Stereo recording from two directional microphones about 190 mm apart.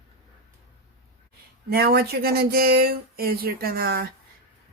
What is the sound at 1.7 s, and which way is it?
Speech, 55° right (ahead or behind).